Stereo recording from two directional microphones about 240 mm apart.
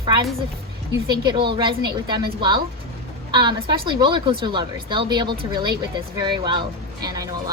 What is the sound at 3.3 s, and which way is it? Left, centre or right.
A woman's voice, centre.